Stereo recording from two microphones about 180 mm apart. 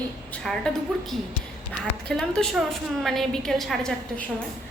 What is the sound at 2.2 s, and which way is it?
A woman's voice, centre (ahead or behind).